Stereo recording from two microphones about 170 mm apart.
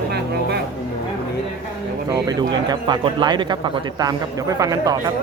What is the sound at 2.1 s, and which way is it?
A man's voice, 25° right (ahead or behind).